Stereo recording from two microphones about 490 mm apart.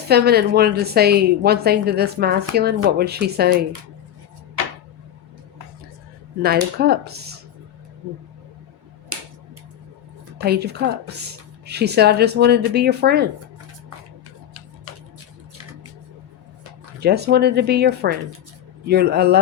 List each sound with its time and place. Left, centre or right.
0.1 s a woman's voice: centre
6.7 s a woman's voice: centre
9.1 s a sound: right
10.3 s a woman's voice: centre
14.9 s a sound: right
17.0 s a woman's voice: centre